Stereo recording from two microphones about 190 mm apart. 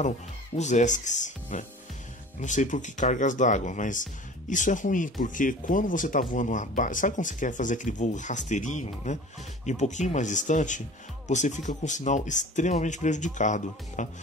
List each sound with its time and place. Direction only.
0.6 s speech: 40° left (ahead or behind)